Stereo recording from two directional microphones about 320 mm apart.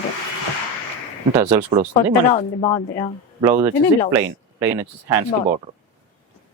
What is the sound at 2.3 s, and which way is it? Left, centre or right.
Speech, centre.